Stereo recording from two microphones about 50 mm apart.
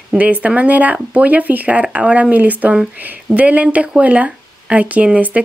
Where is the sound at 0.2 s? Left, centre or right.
Right.